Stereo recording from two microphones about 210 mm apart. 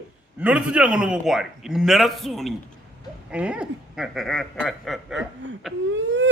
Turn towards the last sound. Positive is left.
turn(degrees=-60)  # may be behind; listen again after turning